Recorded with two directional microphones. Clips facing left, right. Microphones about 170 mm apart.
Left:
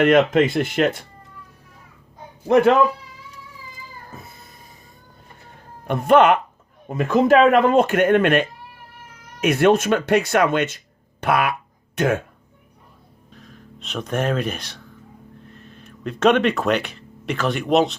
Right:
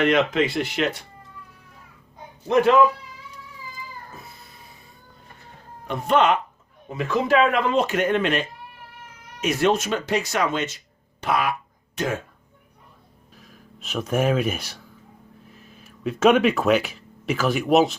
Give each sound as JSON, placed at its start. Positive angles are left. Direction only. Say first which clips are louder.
{"t": 0.0, "sound": "speech", "louder": "left 5 dB", "side_deg": 50}
{"t": 2.5, "sound": "speech", "louder": "left 2 dB", "side_deg": 55}
{"t": 5.9, "sound": "speech", "louder": "left 5 dB", "side_deg": 55}
{"t": 13.3, "sound": "speech", "louder": "left 5 dB", "side_deg": -5}